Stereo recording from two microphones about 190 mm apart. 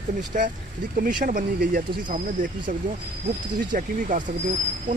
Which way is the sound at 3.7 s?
45° right (ahead or behind).